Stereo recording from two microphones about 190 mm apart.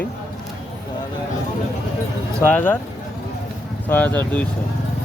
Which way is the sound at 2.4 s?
10° left (ahead or behind).